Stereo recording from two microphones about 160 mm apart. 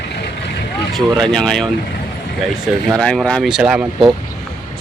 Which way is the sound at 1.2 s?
5° left (ahead or behind).